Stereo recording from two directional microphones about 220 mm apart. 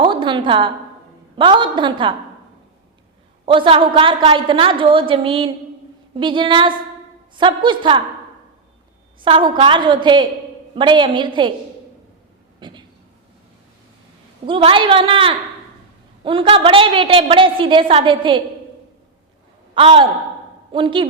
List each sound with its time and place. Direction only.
0.0 s a sound: 20° right (ahead or behind)
1.4 s a woman's voice: 20° right (ahead or behind)
3.4 s a woman's voice: 25° right (ahead or behind)
9.2 s a woman's voice: 25° right (ahead or behind)
12.5 s speech: 20° right (ahead or behind)
14.4 s a woman's voice: 25° right (ahead or behind)
19.7 s a woman's voice: 25° right (ahead or behind)